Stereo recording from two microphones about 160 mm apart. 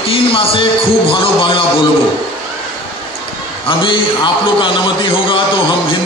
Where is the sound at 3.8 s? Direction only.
30° left (ahead or behind).